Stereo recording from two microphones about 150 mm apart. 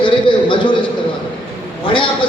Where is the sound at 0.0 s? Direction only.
35° left (ahead or behind).